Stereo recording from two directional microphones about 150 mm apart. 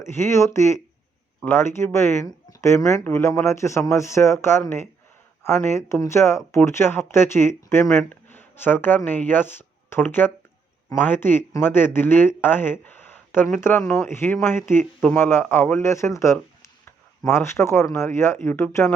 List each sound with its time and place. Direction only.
0.0 s speech: 15° left (ahead or behind)